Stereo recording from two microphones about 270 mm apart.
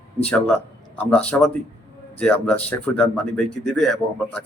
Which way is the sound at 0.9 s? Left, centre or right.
Centre.